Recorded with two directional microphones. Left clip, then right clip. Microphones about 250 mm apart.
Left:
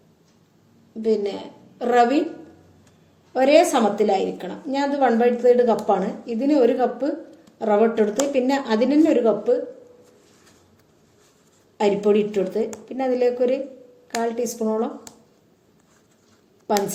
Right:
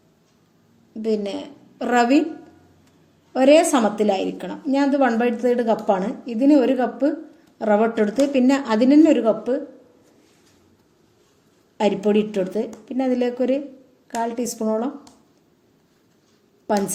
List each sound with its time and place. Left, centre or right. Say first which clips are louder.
1.0 s speech: left 2 dB; right
3.3 s speech: right 1 dB; right
11.8 s speech: left 1 dB; right